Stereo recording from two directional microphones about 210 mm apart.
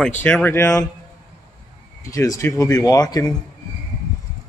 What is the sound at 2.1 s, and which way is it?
Speech, 15° left (ahead or behind).